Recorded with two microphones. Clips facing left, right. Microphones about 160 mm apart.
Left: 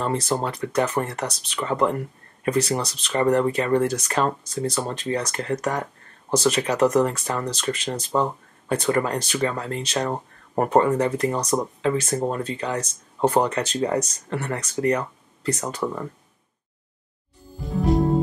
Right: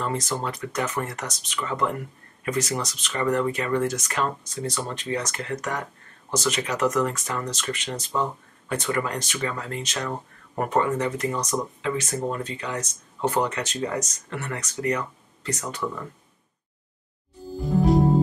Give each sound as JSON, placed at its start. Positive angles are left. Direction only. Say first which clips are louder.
{"t": 0.0, "sound": "speech", "louder": "left 4 dB", "side_deg": 30}
{"t": 17.6, "sound": "music", "louder": "right 2 dB", "side_deg": 0}